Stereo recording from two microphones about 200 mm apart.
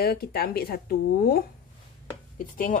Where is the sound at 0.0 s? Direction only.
50° left (ahead or behind).